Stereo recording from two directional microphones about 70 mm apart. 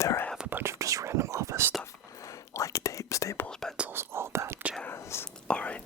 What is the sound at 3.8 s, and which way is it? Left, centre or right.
Whispering, right.